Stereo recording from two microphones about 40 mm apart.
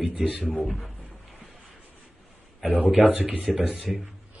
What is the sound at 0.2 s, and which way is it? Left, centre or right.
Speech, centre.